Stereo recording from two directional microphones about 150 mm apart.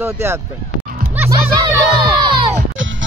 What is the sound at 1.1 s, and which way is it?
Music, 15° right (ahead or behind).